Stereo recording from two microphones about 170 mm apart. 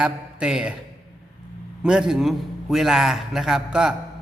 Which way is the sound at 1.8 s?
5° right (ahead or behind).